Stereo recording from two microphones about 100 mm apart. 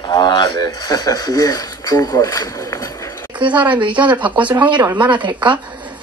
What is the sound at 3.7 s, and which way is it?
Speech, 55° right (ahead or behind).